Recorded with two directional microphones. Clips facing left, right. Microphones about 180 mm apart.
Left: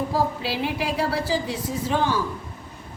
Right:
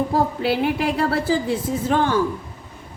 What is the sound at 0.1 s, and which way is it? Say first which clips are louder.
A woman's voice: right 4 dB; 55° right (ahead or behind).